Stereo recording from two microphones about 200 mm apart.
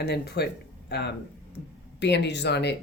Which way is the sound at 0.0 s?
55° left (ahead or behind).